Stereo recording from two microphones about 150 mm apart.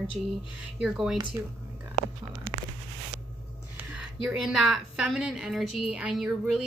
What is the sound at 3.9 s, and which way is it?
Speech, 5° right (ahead or behind).